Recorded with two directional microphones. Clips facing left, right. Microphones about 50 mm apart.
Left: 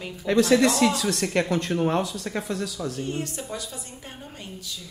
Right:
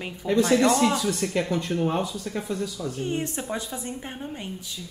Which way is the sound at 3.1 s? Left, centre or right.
Right.